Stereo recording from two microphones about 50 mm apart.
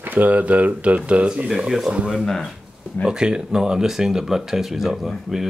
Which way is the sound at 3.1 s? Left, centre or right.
Centre.